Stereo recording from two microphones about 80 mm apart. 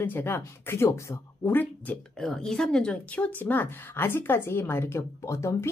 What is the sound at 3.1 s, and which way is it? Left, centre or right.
A woman's voice, left.